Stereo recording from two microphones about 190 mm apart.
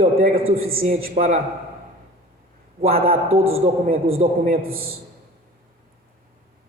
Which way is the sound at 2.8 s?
50° right (ahead or behind).